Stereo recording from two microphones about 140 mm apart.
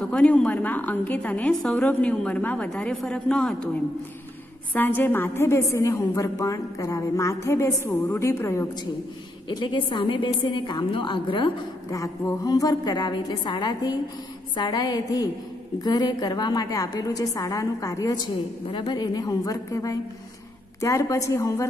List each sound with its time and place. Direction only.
0.0 s a woman's voice: 5° left (ahead or behind)
4.7 s a woman's voice: 15° left (ahead or behind)
9.6 s a woman's voice: 35° left (ahead or behind)
11.9 s a woman's voice: 25° left (ahead or behind)